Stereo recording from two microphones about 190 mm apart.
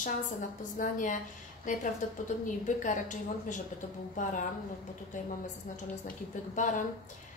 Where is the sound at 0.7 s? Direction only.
45° left (ahead or behind).